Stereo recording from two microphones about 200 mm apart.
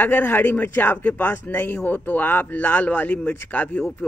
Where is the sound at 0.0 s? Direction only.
10° left (ahead or behind).